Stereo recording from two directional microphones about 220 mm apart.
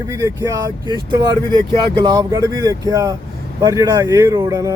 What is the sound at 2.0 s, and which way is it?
Speech, 15° right (ahead or behind).